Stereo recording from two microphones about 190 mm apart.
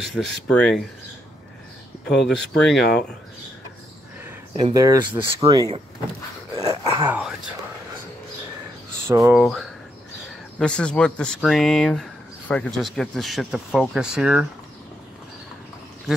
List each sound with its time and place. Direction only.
0.0 s speech: centre (ahead or behind)
2.2 s speech: centre (ahead or behind)
4.6 s speech: 20° right (ahead or behind)
6.6 s a sound: 30° right (ahead or behind)
7.1 s speech: 5° right (ahead or behind)
9.0 s speech: 15° right (ahead or behind)
9.3 s speech: centre (ahead or behind)